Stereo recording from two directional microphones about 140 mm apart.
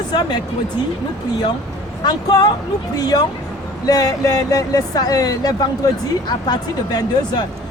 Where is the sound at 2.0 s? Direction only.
30° left (ahead or behind).